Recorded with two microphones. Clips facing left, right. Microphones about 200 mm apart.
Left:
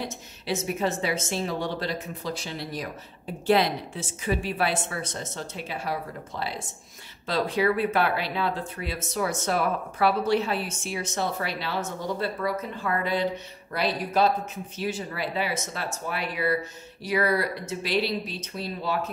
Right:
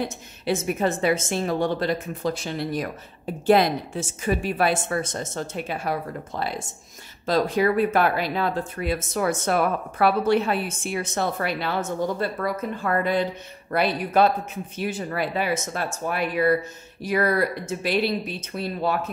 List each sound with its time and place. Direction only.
0.0 s speech: 50° right (ahead or behind)